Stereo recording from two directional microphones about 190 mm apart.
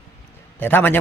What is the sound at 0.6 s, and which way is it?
Speech, 10° left (ahead or behind).